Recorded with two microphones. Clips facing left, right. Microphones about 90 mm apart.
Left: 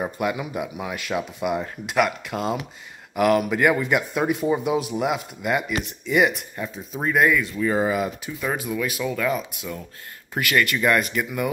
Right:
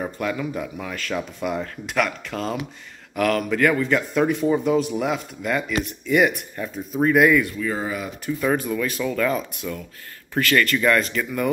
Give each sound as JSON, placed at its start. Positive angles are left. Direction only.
{"t": 0.0, "sound": "speech", "side_deg": 15}
{"t": 7.6, "sound": "speech", "side_deg": 25}
{"t": 8.3, "sound": "speech", "side_deg": 5}
{"t": 10.3, "sound": "speech", "side_deg": 15}